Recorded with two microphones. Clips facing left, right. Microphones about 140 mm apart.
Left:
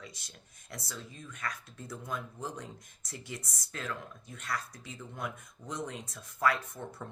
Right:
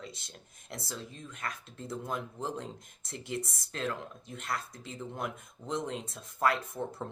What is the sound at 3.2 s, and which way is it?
Speech, 55° right (ahead or behind).